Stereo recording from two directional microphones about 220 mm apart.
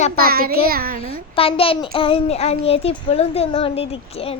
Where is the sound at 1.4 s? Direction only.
25° left (ahead or behind).